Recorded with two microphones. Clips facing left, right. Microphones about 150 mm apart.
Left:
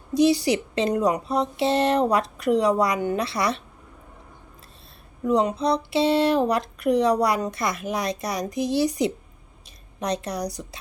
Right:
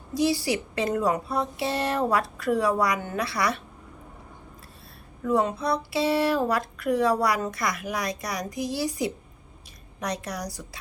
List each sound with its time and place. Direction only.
0.1 s speech: 20° left (ahead or behind)
5.2 s speech: 20° left (ahead or behind)